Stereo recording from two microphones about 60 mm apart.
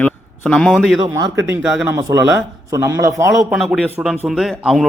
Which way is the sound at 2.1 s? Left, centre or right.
Right.